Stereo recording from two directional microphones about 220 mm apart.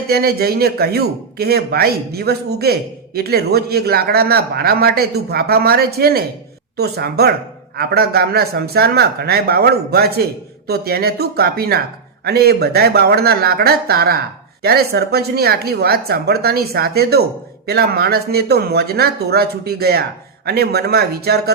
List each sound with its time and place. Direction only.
0.1 s speech: 45° right (ahead or behind)